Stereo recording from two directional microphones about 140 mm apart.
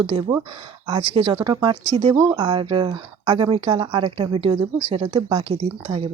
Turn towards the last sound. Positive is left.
turn(degrees=-40)  # may be behind; listen again after turning